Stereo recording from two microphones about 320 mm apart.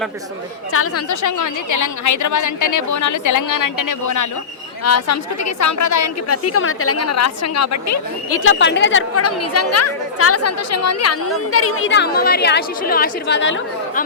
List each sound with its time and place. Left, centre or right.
0.7 s a woman's voice: left
1.1 s a woman's voice: left
4.8 s a woman's voice: left
8.4 s a woman's voice: left